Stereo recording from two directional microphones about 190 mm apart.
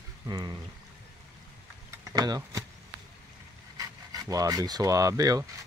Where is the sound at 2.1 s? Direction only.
20° right (ahead or behind).